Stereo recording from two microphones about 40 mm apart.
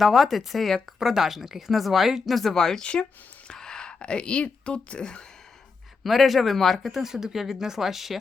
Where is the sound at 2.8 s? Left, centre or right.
Left.